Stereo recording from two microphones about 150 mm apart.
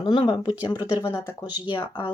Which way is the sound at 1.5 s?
30° left (ahead or behind).